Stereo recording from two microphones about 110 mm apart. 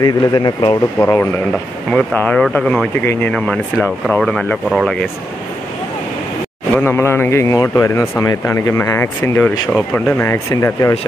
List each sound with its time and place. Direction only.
0.0 s speech: 40° left (ahead or behind)
0.9 s speech: 20° left (ahead or behind); by 4.9 s centre (ahead or behind)
6.7 s speech: 20° left (ahead or behind)